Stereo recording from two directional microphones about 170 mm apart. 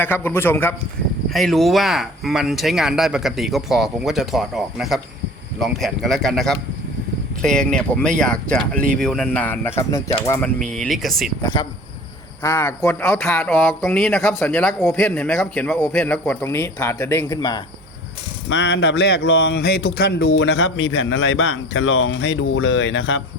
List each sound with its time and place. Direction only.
0.0 s speech: 10° left (ahead or behind)
1.3 s speech: centre (ahead or behind); by 10.5 s 15° left (ahead or behind)
10.8 s speech: centre (ahead or behind)
12.4 s speech: 15° left (ahead or behind)
18.4 s speech: 90° left